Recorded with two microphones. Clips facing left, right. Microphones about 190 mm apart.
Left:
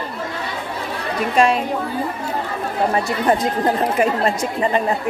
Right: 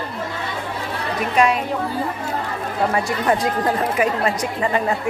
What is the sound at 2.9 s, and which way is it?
A woman's voice, 25° left (ahead or behind).